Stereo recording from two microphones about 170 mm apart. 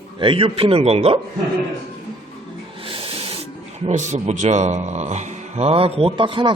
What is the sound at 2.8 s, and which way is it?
Owl, 30° right (ahead or behind).